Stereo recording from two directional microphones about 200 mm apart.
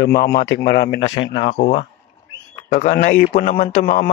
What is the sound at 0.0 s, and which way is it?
Speech, 50° left (ahead or behind).